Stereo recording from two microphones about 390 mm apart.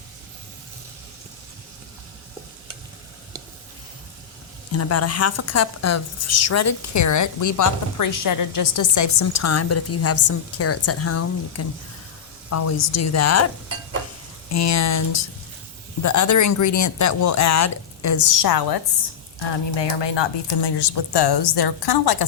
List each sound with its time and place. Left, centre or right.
4.7 s a woman's voice: left
14.5 s speech: left
19.4 s speech: left